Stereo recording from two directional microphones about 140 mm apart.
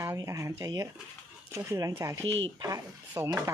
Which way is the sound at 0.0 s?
20° right (ahead or behind).